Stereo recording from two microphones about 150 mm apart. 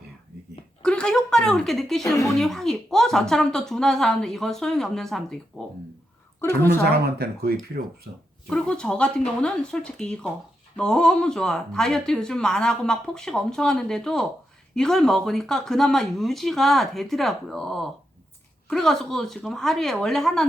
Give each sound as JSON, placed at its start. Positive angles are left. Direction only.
{"t": 0.8, "sound": "speech", "side_deg": 5}
{"t": 6.4, "sound": "a woman's voice", "side_deg": 15}
{"t": 6.9, "sound": "speech", "side_deg": -90}
{"t": 7.8, "sound": "speech", "side_deg": -75}
{"t": 8.4, "sound": "speech", "side_deg": 5}